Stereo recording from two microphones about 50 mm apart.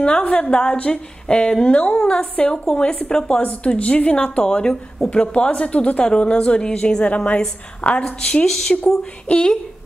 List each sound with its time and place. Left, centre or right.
0.3 s a woman's voice: centre